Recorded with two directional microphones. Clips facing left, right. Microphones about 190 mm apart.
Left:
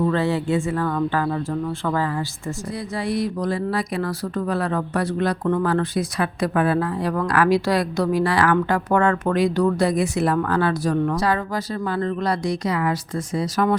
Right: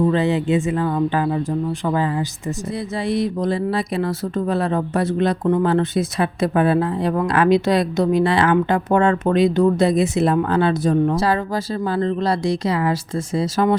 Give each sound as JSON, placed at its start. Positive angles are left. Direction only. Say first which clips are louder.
{"t": 0.0, "sound": "speech", "louder": "right 3 dB", "side_deg": -20}